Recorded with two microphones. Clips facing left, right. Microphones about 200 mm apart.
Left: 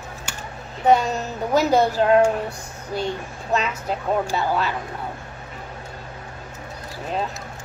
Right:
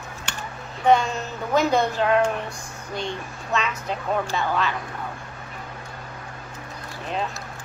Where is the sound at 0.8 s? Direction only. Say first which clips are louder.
Left 1 dB; 40° left (ahead or behind).